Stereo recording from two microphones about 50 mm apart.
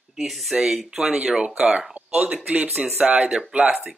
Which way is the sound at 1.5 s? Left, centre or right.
Centre.